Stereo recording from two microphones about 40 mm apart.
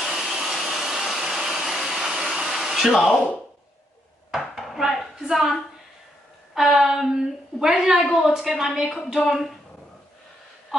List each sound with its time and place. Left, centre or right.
0.0 s vacuum cleaner: centre
4.3 s dishes: centre
5.3 s a woman's voice: centre
7.7 s a woman's voice: right
8.0 s a woman's voice: centre